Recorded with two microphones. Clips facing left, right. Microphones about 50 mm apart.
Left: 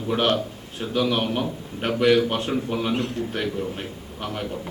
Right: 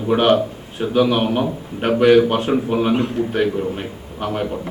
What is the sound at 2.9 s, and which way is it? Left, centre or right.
Speech, centre.